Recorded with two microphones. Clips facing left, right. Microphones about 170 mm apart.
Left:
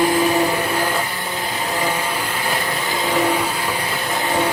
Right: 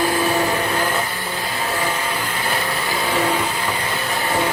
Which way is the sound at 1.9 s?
10° left (ahead or behind).